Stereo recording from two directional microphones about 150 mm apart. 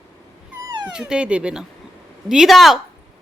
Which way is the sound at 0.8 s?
5° right (ahead or behind).